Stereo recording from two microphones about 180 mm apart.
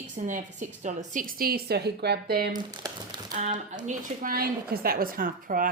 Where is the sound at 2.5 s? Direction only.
25° right (ahead or behind).